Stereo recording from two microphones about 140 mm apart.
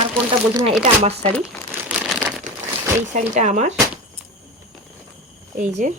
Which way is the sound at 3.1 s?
60° right (ahead or behind).